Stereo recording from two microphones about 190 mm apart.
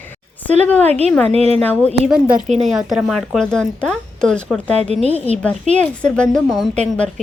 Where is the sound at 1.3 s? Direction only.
35° right (ahead or behind).